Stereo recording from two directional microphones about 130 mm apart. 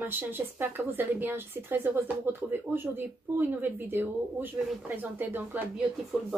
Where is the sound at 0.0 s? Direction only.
15° right (ahead or behind).